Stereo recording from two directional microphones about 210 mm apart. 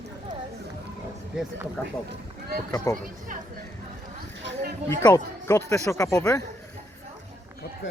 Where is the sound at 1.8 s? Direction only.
10° left (ahead or behind).